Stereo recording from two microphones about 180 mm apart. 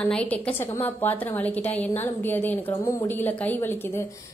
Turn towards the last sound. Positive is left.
turn(degrees=10)  # may be behind; listen again after turning